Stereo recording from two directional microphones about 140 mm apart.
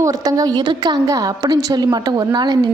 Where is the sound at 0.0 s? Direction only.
25° right (ahead or behind).